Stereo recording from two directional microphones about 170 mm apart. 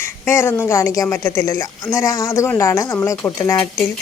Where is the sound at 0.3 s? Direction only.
15° left (ahead or behind).